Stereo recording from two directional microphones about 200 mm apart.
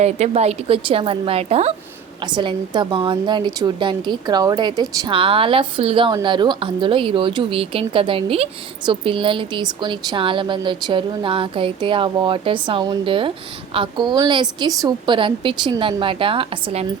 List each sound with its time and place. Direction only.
0.0 s speech: 30° right (ahead or behind)